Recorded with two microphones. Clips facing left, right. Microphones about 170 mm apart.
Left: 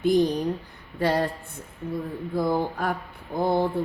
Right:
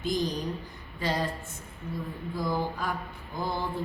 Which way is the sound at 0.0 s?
60° left (ahead or behind).